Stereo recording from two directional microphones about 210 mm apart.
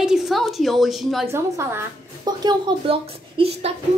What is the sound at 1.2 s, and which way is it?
Speech, 10° right (ahead or behind).